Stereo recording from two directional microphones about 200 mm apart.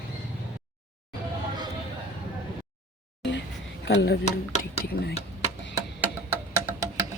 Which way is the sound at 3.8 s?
60° left (ahead or behind).